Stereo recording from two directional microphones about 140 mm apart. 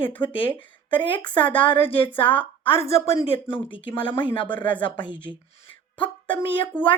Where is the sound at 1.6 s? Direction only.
40° left (ahead or behind).